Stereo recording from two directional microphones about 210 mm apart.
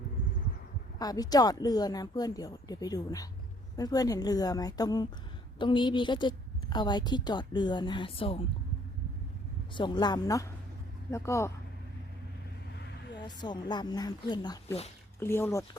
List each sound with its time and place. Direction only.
0.9 s a woman's voice: 20° left (ahead or behind)
9.7 s a woman's voice: 20° left (ahead or behind)
12.8 s vehicle: 55° left (ahead or behind)
13.2 s a woman's voice: 20° left (ahead or behind)